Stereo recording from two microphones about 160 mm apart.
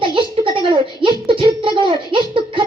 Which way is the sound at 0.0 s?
30° right (ahead or behind).